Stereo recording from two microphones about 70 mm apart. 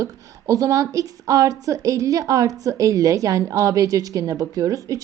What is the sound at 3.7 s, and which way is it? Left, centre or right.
A woman's voice, right.